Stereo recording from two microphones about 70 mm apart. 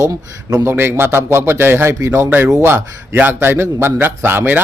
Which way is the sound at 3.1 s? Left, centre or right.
Right.